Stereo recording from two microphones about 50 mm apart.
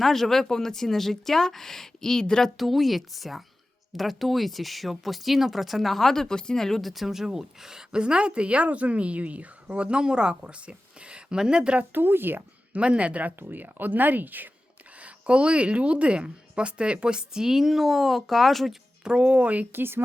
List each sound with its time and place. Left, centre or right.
0.0 s speech: centre
2.6 s speech: centre; by 11.9 s right
11.9 s speech: right
12.7 s speech: right
13.4 s speech: right
15.0 s speech: right; by 18.8 s centre
19.0 s speech: right
19.7 s speech: right